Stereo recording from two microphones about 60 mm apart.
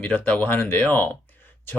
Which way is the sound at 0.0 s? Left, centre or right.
Left.